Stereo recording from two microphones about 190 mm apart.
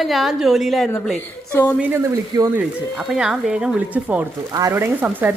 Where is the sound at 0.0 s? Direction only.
Centre (ahead or behind).